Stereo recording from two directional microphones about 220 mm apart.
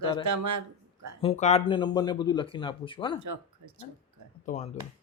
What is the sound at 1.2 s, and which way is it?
Speech, 30° left (ahead or behind).